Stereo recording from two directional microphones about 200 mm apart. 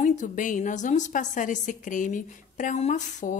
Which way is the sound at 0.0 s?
35° left (ahead or behind).